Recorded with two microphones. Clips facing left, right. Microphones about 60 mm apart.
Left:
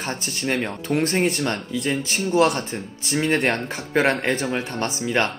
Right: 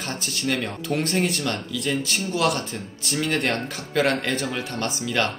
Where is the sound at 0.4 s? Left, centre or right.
Left.